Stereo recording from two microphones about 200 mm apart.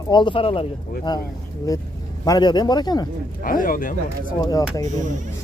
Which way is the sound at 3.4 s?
45° left (ahead or behind).